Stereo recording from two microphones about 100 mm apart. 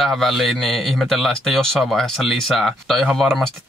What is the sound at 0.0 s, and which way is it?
Speech, centre (ahead or behind).